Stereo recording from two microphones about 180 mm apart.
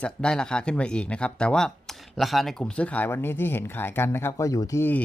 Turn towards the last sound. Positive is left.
turn(degrees=10)  # may be behind; listen again after turning